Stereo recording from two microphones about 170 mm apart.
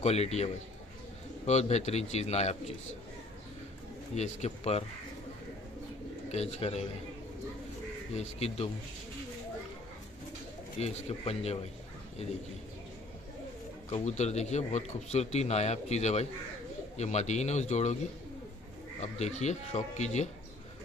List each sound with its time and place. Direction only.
0.0 s a man's voice: 35° left (ahead or behind)
4.1 s a man's voice: 40° left (ahead or behind)
6.3 s a man's voice: 35° left (ahead or behind)
8.2 s a man's voice: 35° left (ahead or behind)
10.8 s a man's voice: 40° left (ahead or behind)
13.8 s a man's voice: 40° left (ahead or behind)
18.9 s a man's voice: 40° left (ahead or behind)